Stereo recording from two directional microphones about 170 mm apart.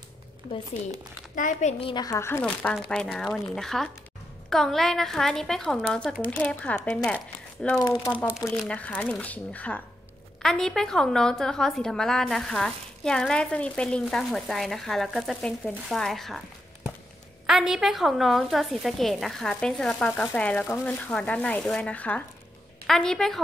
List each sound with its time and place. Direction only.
1.3 s a woman's voice: 45° left (ahead or behind); by 7.8 s 5° left (ahead or behind)
7.8 s speech: 20° left (ahead or behind)
8.6 s a woman's voice: 10° left (ahead or behind)